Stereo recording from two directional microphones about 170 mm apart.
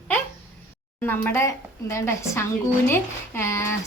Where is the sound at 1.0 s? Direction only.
10° left (ahead or behind).